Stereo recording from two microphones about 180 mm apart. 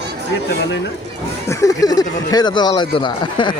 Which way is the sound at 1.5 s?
20° left (ahead or behind).